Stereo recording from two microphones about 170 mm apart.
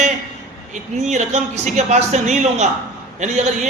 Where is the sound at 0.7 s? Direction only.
45° right (ahead or behind).